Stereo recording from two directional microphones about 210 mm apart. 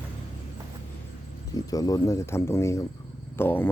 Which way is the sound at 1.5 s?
15° left (ahead or behind).